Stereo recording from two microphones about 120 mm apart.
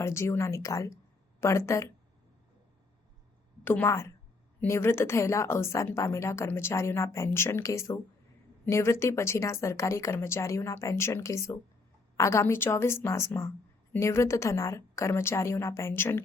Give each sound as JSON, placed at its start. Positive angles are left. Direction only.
{"t": 0.0, "sound": "speech", "side_deg": 25}
{"t": 3.6, "sound": "speech", "side_deg": 15}